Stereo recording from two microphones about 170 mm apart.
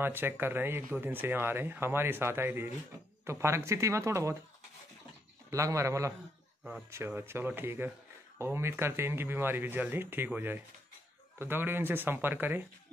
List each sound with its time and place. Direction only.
0.0 s speech: 10° right (ahead or behind)
5.5 s speech: 20° right (ahead or behind)